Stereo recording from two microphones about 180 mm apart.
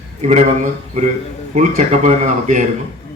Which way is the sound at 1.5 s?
40° right (ahead or behind).